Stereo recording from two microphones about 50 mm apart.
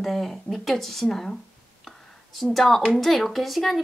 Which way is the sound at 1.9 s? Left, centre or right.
Centre.